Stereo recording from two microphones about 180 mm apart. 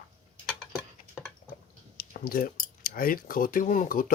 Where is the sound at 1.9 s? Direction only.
55° left (ahead or behind).